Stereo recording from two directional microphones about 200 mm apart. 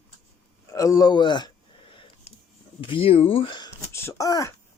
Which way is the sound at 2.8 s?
25° left (ahead or behind).